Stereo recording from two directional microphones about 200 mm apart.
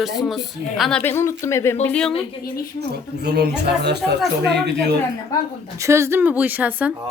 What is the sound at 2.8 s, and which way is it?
Speech, 55° right (ahead or behind).